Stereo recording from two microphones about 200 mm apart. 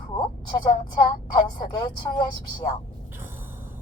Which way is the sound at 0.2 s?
25° left (ahead or behind).